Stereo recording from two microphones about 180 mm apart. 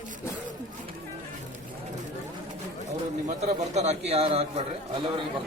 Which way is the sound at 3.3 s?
40° right (ahead or behind).